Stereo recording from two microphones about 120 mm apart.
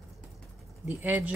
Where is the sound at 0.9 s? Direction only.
20° right (ahead or behind).